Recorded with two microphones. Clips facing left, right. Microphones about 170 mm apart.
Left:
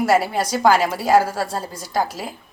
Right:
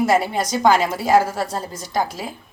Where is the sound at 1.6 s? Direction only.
35° left (ahead or behind).